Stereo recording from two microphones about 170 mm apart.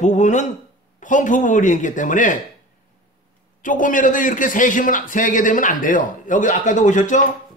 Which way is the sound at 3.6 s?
50° left (ahead or behind).